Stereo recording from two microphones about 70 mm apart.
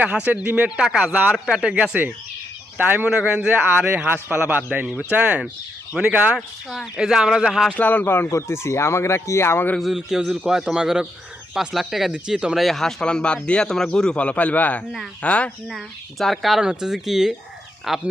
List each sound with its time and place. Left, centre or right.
0.0 s a man's voice: right
0.8 s speech: centre
1.1 s a man's voice: right
1.5 s a man's voice: centre
3.1 s a man's voice: centre
4.9 s a man's voice: centre
6.3 s speech: centre
7.8 s speech: left
9.8 s speech: centre
12.6 s a man's voice: centre
15.6 s speech: centre